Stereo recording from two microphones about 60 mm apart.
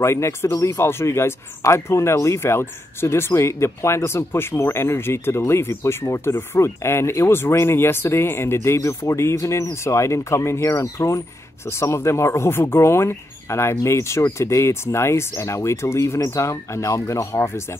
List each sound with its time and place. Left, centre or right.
0.0 s speech: left